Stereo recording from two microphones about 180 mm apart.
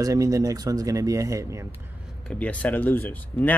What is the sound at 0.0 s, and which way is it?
Speech, 20° right (ahead or behind).